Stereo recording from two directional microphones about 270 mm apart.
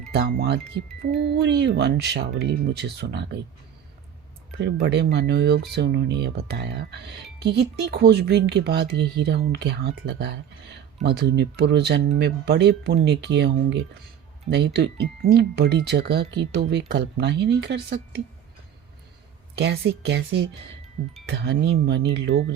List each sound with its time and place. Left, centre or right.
0.1 s speech: right
4.5 s speech: right
19.5 s speech: right